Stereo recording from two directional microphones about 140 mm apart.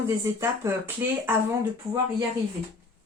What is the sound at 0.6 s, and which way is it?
Speech, 20° right (ahead or behind).